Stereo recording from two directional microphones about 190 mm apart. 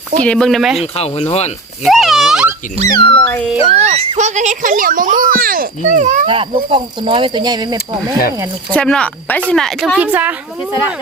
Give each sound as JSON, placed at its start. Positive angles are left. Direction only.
{"t": 0.2, "sound": "speech", "side_deg": 5}
{"t": 0.9, "sound": "speech", "side_deg": 35}
{"t": 1.8, "sound": "a sound", "side_deg": 0}
{"t": 2.8, "sound": "speech", "side_deg": 25}
{"t": 3.6, "sound": "a child's voice", "side_deg": -30}
{"t": 8.7, "sound": "speech", "side_deg": 5}